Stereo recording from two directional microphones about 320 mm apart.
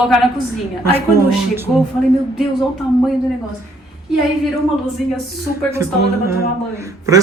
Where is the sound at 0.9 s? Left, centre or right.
Centre.